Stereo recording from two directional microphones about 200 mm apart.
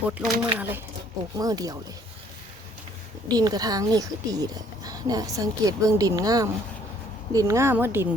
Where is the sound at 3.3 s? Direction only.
20° right (ahead or behind).